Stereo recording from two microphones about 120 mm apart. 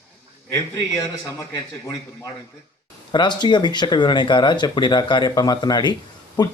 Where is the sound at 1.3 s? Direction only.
25° left (ahead or behind).